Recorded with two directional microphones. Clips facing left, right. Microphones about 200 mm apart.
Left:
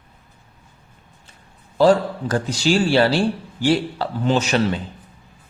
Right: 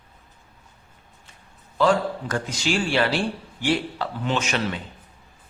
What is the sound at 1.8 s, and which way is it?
A man's voice, 35° left (ahead or behind).